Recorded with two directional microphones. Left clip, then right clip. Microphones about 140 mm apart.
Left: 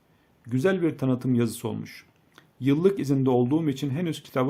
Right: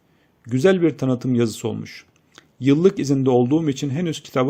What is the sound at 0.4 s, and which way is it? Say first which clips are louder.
Speech: right 7 dB; 25° right (ahead or behind).